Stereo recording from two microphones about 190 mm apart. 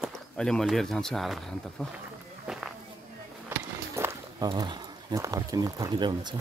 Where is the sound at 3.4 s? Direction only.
15° right (ahead or behind).